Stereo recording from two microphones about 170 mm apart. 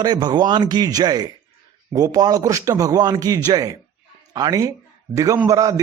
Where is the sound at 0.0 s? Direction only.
25° right (ahead or behind).